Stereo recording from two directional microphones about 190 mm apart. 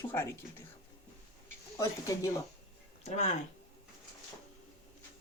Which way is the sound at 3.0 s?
35° left (ahead or behind).